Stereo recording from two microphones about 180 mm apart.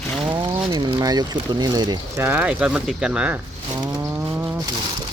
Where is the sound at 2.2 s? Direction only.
10° right (ahead or behind).